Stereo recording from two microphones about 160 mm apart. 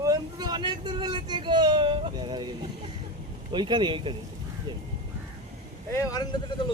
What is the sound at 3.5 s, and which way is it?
Speech, 30° right (ahead or behind).